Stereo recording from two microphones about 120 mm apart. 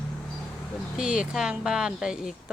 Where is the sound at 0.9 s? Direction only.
5° right (ahead or behind).